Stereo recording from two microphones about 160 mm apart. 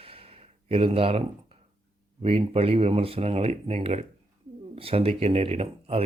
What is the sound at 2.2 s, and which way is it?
Speech, 40° right (ahead or behind).